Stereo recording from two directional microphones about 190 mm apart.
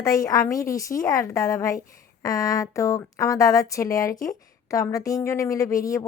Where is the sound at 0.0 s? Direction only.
20° left (ahead or behind).